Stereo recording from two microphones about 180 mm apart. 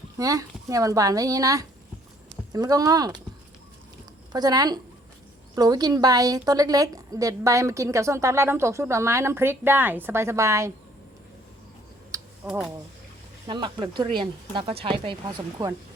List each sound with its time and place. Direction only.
0.2 s speech: 20° right (ahead or behind)
4.3 s a woman's voice: 20° right (ahead or behind)
12.1 s typing: 20° right (ahead or behind)
12.5 s speech: centre (ahead or behind)
13.5 s speech: 25° right (ahead or behind)